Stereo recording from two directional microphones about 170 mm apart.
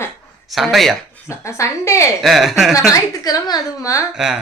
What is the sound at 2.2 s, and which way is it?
Speech, centre (ahead or behind).